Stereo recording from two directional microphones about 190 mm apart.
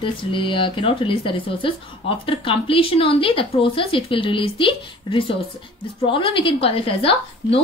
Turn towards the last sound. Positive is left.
turn(degrees=30)  # may be behind; listen again after turning